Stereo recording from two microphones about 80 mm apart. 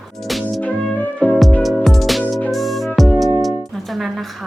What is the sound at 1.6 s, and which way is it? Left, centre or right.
Music, centre.